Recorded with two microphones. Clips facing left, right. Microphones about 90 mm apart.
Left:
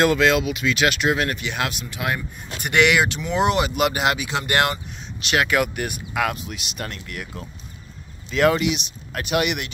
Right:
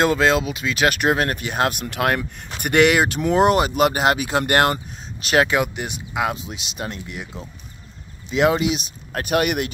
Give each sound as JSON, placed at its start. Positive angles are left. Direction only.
{"t": 0.0, "sound": "speech", "side_deg": -30}
{"t": 0.8, "sound": "speech", "side_deg": -45}
{"t": 2.7, "sound": "speech", "side_deg": -40}
{"t": 5.5, "sound": "speech", "side_deg": -20}
{"t": 8.6, "sound": "speech", "side_deg": -35}